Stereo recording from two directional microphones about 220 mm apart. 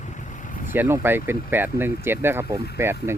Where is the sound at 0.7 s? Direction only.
10° right (ahead or behind).